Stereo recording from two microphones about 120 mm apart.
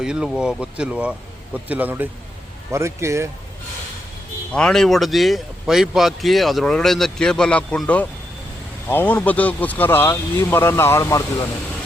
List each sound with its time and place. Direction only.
0.0 s speech: 5° right (ahead or behind); by 3.2 s 25° right (ahead or behind)
4.5 s speech: 5° left (ahead or behind); by 11.2 s 25° left (ahead or behind)